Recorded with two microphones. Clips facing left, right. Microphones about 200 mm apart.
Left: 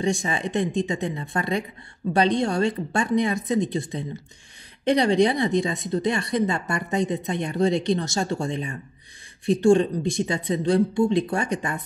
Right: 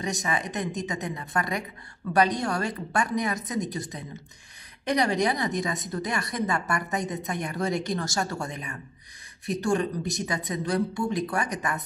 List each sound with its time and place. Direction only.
0.0 s speech: 30° left (ahead or behind)